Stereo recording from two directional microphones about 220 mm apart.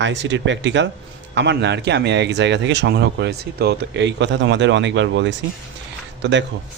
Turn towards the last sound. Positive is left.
turn(degrees=-55)  # may be behind; listen again after turning